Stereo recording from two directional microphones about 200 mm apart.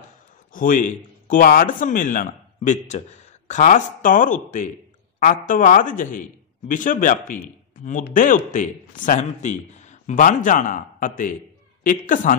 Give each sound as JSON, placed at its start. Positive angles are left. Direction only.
{"t": 0.5, "sound": "speech", "side_deg": 40}